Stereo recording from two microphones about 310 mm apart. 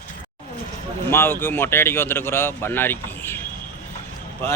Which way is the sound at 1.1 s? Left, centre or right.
Centre.